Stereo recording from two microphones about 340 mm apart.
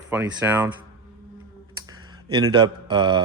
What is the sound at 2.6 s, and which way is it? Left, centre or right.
Speech, centre.